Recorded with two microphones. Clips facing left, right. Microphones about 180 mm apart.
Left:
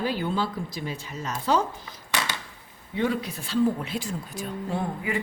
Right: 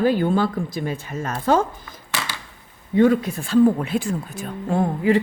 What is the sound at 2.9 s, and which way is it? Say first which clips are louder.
Speech: right 10 dB; 50° right (ahead or behind).